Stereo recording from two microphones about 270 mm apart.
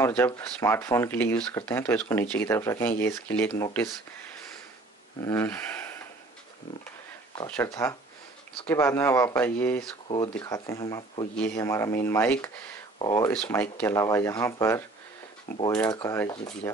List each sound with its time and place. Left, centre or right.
0.0 s speech: centre
5.2 s a sound: centre
7.4 s speech: centre